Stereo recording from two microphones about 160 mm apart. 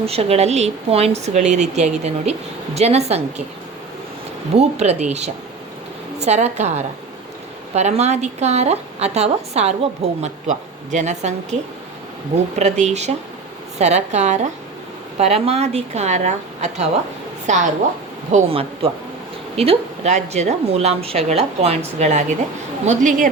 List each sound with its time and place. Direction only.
0.0 s a woman's voice: 40° right (ahead or behind)
4.5 s a woman's voice: 45° right (ahead or behind)
6.1 s a woman's voice: 45° right (ahead or behind)
12.5 s a woman's voice: 45° right (ahead or behind)